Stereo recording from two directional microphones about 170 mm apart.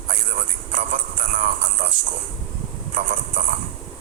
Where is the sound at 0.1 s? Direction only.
45° right (ahead or behind).